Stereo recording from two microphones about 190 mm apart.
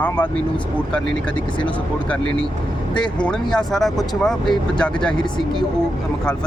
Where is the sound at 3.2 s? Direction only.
5° left (ahead or behind).